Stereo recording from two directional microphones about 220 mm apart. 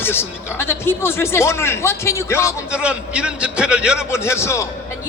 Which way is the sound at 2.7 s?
5° right (ahead or behind).